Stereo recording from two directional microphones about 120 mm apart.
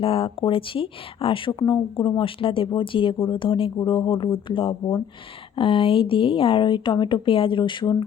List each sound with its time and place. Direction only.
0.0 s speech: 50° left (ahead or behind)